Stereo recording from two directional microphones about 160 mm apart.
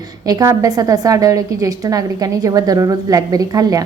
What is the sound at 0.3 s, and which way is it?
A woman's voice, 20° right (ahead or behind).